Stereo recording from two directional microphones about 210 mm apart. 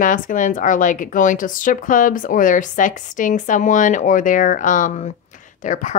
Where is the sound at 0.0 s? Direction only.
40° left (ahead or behind).